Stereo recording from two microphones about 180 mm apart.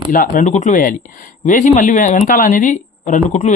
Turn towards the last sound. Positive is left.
turn(degrees=40)  # may be behind; listen again after turning